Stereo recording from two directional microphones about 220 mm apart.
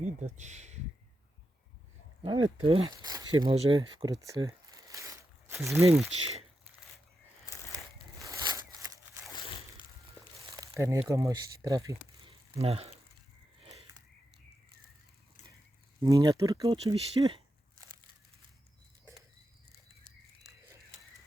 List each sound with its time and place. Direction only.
0.0 s speech: 30° right (ahead or behind)
2.6 s speech: 20° right (ahead or behind)
7.5 s crushing: 15° left (ahead or behind)
8.2 s a sound: 15° right (ahead or behind)
10.3 s crumpling: 15° right (ahead or behind)
11.1 s speech: 15° right (ahead or behind)
12.5 s speech: 25° right (ahead or behind)
13.6 s a sound: 25° right (ahead or behind)
16.0 s speech: 15° right (ahead or behind)